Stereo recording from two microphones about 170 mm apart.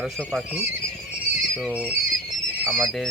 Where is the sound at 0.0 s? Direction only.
5° left (ahead or behind).